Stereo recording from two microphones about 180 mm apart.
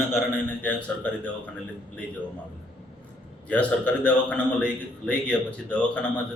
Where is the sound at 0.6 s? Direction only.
5° left (ahead or behind).